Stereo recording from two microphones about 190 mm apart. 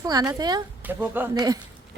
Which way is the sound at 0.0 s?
20° right (ahead or behind).